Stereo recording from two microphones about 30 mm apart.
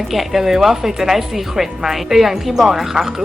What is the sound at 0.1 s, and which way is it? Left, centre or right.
Speech, centre.